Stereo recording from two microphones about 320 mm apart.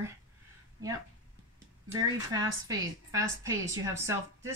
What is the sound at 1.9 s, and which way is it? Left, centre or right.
Speech, centre.